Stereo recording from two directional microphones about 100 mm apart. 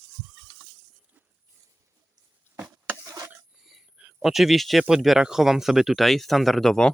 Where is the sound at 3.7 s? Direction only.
5° right (ahead or behind).